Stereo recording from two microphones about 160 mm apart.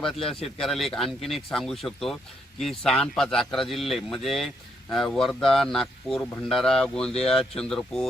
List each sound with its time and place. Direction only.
0.0 s speech: centre (ahead or behind)